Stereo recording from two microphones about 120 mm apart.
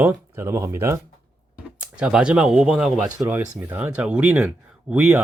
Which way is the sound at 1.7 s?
10° right (ahead or behind).